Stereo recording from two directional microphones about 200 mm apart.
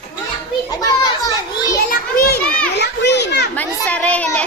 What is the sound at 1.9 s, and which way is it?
Children playing, 50° left (ahead or behind).